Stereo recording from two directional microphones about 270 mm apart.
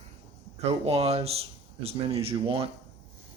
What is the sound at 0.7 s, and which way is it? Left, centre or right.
Speech, right.